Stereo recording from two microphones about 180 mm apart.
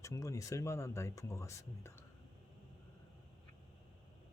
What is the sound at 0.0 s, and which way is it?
Speech, 15° left (ahead or behind).